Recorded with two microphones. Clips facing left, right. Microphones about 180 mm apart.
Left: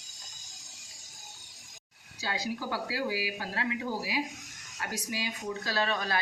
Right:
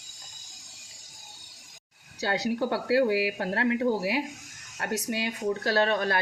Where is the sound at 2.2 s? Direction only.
70° right (ahead or behind).